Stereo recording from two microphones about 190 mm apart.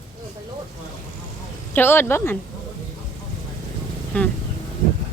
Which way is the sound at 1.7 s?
10° left (ahead or behind).